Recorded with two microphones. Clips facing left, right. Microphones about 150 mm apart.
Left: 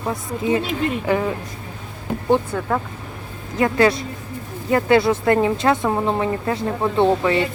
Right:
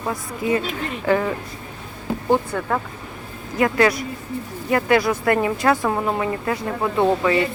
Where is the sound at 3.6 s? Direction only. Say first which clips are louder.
Left 1 dB; 25° left (ahead or behind).